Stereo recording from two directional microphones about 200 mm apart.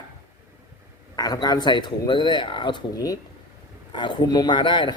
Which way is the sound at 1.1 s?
20° left (ahead or behind).